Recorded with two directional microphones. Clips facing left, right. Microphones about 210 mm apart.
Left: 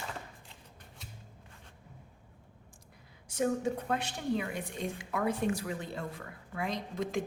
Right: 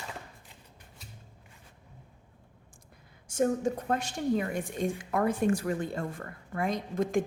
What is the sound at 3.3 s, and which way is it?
A woman's voice, 45° right (ahead or behind).